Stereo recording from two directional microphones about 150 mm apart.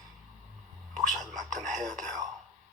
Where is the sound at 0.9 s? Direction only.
Centre (ahead or behind).